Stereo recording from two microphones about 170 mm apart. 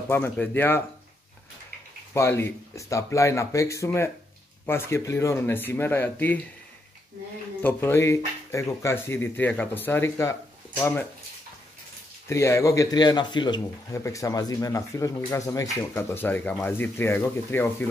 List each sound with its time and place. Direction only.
0.1 s speech: 10° left (ahead or behind)
2.1 s speech: 15° left (ahead or behind)
7.6 s speech: 15° left (ahead or behind)
12.3 s speech: 15° left (ahead or behind)